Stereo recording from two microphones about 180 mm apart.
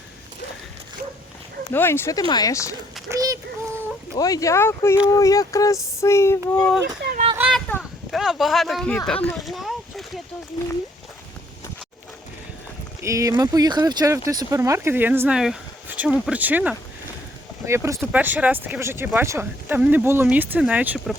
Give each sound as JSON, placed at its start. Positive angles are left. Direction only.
{"t": 1.7, "sound": "speech", "side_deg": 10}
{"t": 3.1, "sound": "speech", "side_deg": -20}
{"t": 4.1, "sound": "speech", "side_deg": 20}
{"t": 6.8, "sound": "speech", "side_deg": -60}
{"t": 7.3, "sound": "speech", "side_deg": -5}
{"t": 9.0, "sound": "a sound", "side_deg": 5}
{"t": 13.0, "sound": "speech", "side_deg": -15}